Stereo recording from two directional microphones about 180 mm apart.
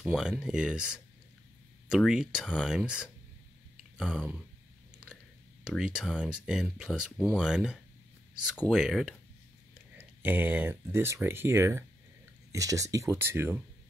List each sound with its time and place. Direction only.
0.0 s speech: 5° right (ahead or behind)